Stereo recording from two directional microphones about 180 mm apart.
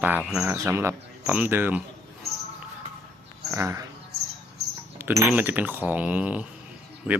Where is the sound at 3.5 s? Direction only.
15° right (ahead or behind).